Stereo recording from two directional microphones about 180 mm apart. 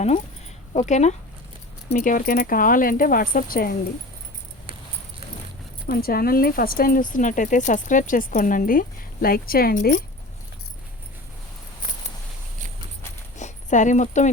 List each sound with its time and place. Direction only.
0.7 s speech: 40° left (ahead or behind)
1.9 s speech: 50° left (ahead or behind)
5.9 s speech: 55° left (ahead or behind)
13.3 s a sound: 40° left (ahead or behind)